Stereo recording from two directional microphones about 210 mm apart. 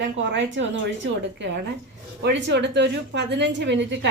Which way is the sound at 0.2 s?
60° right (ahead or behind).